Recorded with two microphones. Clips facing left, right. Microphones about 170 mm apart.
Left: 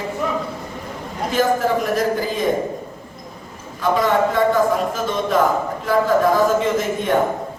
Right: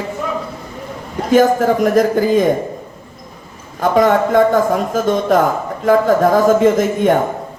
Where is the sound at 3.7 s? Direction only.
50° right (ahead or behind).